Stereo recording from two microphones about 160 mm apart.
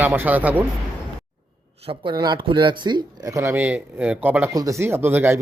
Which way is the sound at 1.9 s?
30° right (ahead or behind).